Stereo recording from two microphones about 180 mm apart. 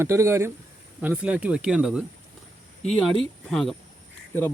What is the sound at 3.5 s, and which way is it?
Speech, 5° left (ahead or behind).